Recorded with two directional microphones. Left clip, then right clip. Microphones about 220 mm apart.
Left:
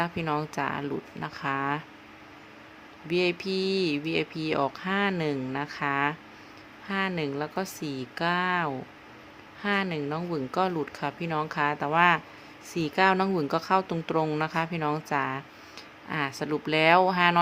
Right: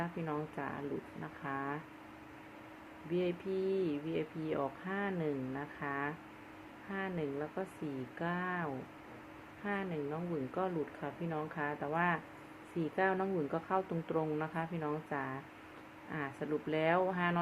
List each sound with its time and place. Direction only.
0.0 s speech: 45° left (ahead or behind)
3.1 s speech: 45° left (ahead or behind)